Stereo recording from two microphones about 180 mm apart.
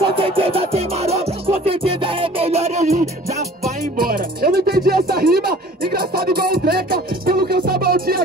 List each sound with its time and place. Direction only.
0.0 s music: 30° right (ahead or behind)
4.0 s music: 55° right (ahead or behind)